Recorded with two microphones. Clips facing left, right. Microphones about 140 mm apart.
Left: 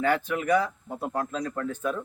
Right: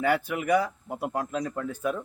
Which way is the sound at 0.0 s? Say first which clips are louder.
Even; 10° right (ahead or behind).